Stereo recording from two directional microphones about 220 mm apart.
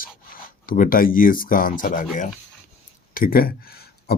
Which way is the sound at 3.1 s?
40° left (ahead or behind).